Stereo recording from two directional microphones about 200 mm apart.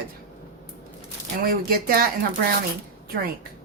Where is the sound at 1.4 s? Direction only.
45° right (ahead or behind).